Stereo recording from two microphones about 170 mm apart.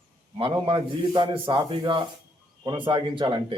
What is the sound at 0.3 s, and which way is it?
A man's voice, 30° right (ahead or behind).